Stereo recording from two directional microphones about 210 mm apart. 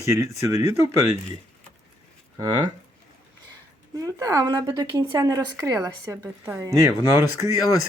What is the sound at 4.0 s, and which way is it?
A woman's voice, 15° right (ahead or behind).